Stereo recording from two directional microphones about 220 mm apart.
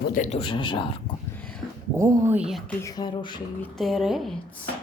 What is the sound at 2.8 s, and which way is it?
Speech, 15° left (ahead or behind).